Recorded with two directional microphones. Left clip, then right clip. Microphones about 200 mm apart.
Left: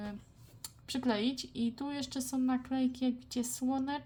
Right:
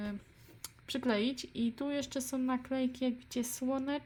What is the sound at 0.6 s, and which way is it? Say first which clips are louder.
Speech: even; 15° right (ahead or behind).